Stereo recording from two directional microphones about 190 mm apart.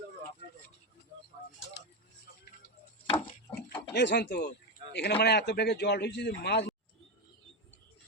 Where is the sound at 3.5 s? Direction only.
60° left (ahead or behind).